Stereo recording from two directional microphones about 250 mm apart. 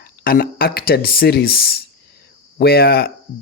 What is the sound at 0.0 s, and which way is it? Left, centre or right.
Speech, left.